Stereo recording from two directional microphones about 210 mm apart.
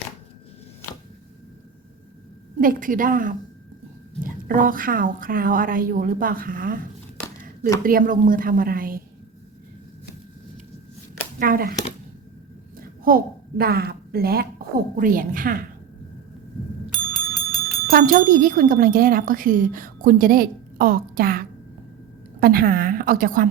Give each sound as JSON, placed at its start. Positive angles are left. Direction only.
{"t": 2.6, "sound": "speech", "side_deg": -40}
{"t": 7.9, "sound": "a woman's voice", "side_deg": -40}
{"t": 11.3, "sound": "speech", "side_deg": -45}
{"t": 13.1, "sound": "a woman's voice", "side_deg": -45}
{"t": 16.8, "sound": "bicycle bell", "side_deg": 5}
{"t": 17.9, "sound": "a woman's voice", "side_deg": -40}